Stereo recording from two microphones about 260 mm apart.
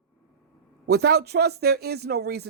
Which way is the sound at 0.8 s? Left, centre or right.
Right.